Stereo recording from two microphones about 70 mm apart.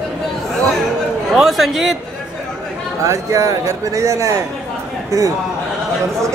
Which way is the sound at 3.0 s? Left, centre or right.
Right.